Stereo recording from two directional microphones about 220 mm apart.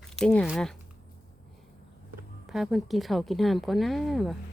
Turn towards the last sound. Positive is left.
turn(degrees=0)  # may be behind; listen again after turning